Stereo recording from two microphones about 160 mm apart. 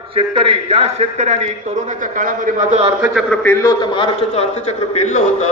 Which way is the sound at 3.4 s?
15° left (ahead or behind).